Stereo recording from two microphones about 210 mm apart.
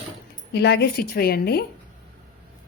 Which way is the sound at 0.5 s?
50° left (ahead or behind).